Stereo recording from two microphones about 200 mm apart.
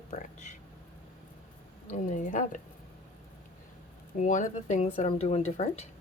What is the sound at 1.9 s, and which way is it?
Speech, 40° left (ahead or behind).